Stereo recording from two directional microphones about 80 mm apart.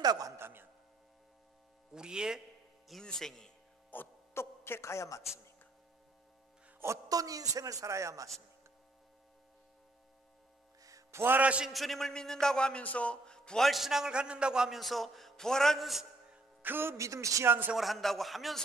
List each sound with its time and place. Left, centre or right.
0.0 s speech: right
0.4 s a sound: right
2.0 s a man's voice: centre
2.9 s a man's voice: centre
3.9 s a sound: left
7.1 s speech: right
10.8 s music: right
11.4 s a man's voice: centre
11.7 s a man's voice: centre
14.8 s a man's voice: centre
16.6 s speech: right
16.9 s speech: right
17.5 s a man's voice: right
17.7 s a man's voice: centre